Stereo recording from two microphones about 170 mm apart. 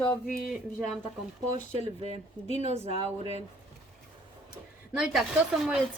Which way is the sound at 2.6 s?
35° right (ahead or behind).